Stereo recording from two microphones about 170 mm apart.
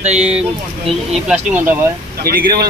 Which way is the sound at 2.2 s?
60° right (ahead or behind).